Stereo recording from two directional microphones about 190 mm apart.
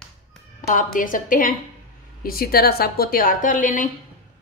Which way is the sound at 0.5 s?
45° left (ahead or behind).